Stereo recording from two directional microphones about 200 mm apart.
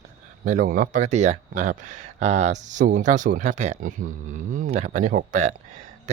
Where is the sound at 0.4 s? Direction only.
40° right (ahead or behind).